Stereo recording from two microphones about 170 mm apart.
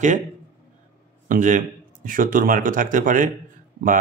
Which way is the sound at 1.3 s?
50° right (ahead or behind).